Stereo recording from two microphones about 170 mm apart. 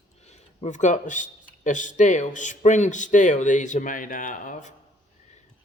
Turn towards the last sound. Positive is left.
turn(degrees=50)  # may be behind; listen again after turning